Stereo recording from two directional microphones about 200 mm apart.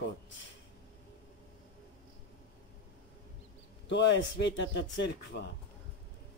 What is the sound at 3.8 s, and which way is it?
Speech, 65° left (ahead or behind).